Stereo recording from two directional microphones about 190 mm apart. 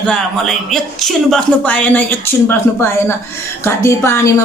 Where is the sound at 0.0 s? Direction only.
5° left (ahead or behind).